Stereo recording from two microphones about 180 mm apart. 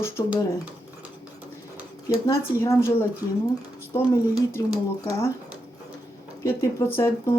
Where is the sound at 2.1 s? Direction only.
15° left (ahead or behind).